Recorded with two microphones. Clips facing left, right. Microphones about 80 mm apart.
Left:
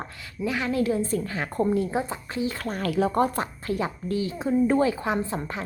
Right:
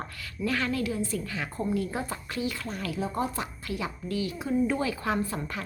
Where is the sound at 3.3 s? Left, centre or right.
Left.